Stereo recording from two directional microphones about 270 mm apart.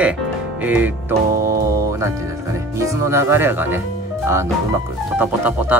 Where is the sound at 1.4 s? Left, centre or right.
Right.